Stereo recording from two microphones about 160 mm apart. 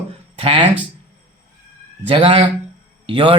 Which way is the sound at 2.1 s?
35° right (ahead or behind).